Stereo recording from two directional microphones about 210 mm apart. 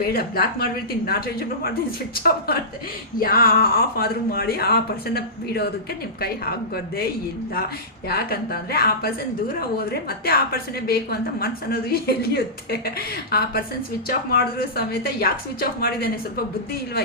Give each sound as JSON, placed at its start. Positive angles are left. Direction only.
{"t": 0.0, "sound": "a woman's voice", "side_deg": 45}